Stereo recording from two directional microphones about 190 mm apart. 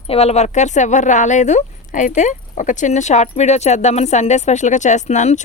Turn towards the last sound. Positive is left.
turn(degrees=35)  # may be behind; listen again after turning